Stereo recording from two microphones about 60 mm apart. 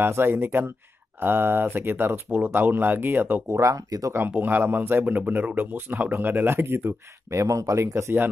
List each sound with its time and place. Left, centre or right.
0.0 s speech: right
3.4 s speech: right
4.3 s speech: right
7.2 s speech: right